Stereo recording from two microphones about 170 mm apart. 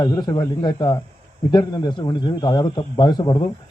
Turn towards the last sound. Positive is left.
turn(degrees=25)  # may be behind; listen again after turning